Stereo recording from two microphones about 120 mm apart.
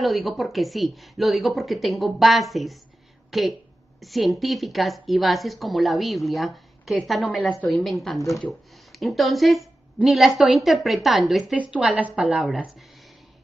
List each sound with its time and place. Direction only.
0.0 s a woman's voice: centre (ahead or behind)